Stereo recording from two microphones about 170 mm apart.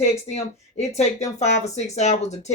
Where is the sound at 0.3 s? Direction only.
40° left (ahead or behind).